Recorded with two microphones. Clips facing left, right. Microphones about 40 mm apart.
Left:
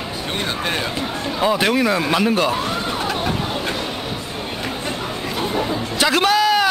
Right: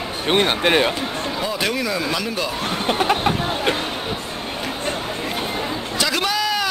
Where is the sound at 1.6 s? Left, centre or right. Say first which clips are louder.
Left 4 dB; centre.